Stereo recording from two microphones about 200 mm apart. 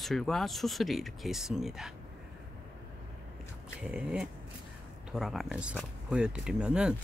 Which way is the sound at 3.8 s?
5° right (ahead or behind).